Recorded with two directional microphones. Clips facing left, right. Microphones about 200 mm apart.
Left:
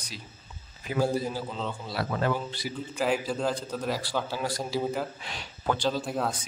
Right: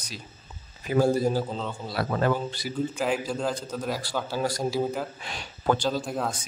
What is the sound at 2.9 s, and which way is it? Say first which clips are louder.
A man's voice: left 5 dB; centre (ahead or behind).